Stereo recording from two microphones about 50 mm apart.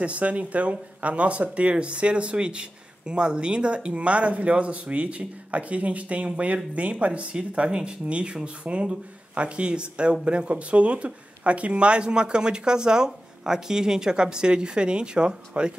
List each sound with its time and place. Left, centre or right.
0.0 s speech: right